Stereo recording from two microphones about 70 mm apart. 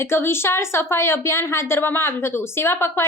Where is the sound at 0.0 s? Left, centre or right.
Left.